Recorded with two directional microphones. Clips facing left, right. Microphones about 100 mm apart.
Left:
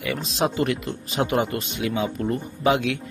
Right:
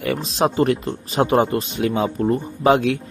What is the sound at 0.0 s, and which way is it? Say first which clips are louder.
Speech: right 4 dB; 35° right (ahead or behind).